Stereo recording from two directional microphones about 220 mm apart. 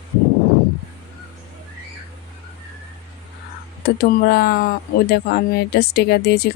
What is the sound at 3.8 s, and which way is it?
Speech, 45° left (ahead or behind).